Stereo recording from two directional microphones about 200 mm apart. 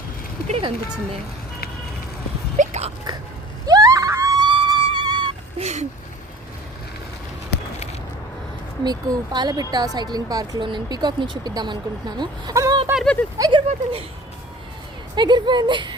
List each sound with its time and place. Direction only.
0.4 s speech: 30° right (ahead or behind)
2.6 s biting: 35° right (ahead or behind)
3.7 s a sound: 15° right (ahead or behind)
8.8 s speech: 20° right (ahead or behind)
12.9 s a sound: centre (ahead or behind)
13.4 s speech: 25° right (ahead or behind)
15.1 s speech: 20° right (ahead or behind)